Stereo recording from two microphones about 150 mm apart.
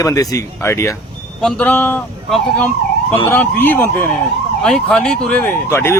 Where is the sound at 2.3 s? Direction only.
Centre (ahead or behind).